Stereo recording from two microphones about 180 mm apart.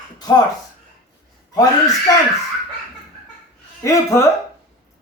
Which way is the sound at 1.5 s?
20° left (ahead or behind).